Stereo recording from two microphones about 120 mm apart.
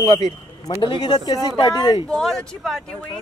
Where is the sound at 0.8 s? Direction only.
40° left (ahead or behind).